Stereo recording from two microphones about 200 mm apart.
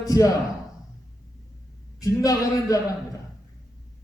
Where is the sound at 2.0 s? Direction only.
15° left (ahead or behind).